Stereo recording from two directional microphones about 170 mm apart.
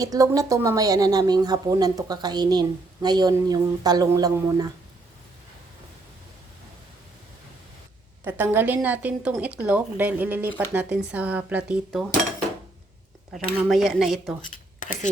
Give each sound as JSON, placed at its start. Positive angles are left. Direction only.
{"t": 0.0, "sound": "speech", "side_deg": -20}
{"t": 8.2, "sound": "speech", "side_deg": -10}
{"t": 13.3, "sound": "speech", "side_deg": 0}